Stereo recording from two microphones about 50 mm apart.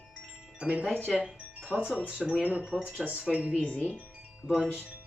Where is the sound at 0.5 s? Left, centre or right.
Right.